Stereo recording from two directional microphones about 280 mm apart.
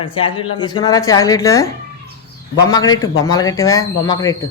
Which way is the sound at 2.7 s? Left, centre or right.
Centre.